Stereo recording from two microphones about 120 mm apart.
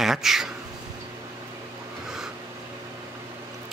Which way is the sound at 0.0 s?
5° right (ahead or behind).